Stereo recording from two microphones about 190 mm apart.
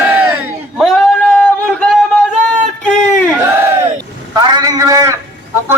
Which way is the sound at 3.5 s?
10° right (ahead or behind).